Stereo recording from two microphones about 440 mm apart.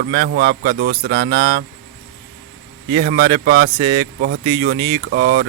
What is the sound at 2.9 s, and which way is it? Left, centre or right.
Speech, right.